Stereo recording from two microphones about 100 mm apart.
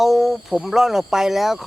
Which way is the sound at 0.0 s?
Centre (ahead or behind).